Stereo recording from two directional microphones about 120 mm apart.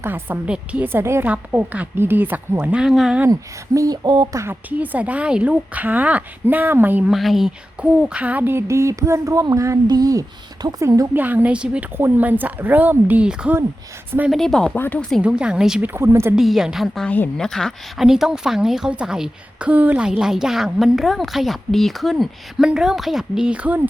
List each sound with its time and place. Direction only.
0.0 s a woman's voice: 15° right (ahead or behind)
3.8 s beatboxing: 35° right (ahead or behind)
4.4 s a woman's voice: 15° right (ahead or behind)
7.1 s speech: centre (ahead or behind); by 11.2 s 25° right (ahead or behind)
11.2 s a woman's voice: 15° right (ahead or behind)
14.3 s speech: 5° left (ahead or behind)
14.8 s speech: 15° left (ahead or behind)
15.2 s a woman's voice: 10° right (ahead or behind)
15.9 s speech: 20° right (ahead or behind)
16.3 s speech: 5° right (ahead or behind)